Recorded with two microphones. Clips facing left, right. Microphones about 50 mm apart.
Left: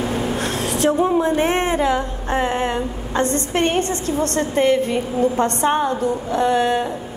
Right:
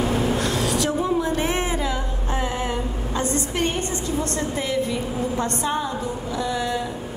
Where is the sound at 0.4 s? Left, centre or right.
Left.